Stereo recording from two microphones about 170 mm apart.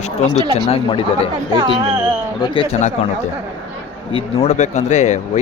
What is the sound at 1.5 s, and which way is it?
Speech, 30° right (ahead or behind).